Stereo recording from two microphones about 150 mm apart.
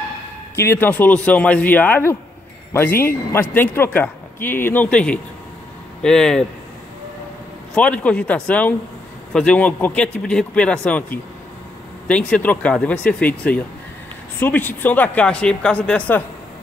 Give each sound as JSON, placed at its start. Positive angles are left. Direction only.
{"t": 0.6, "sound": "speech", "side_deg": 15}
{"t": 7.7, "sound": "speech", "side_deg": 10}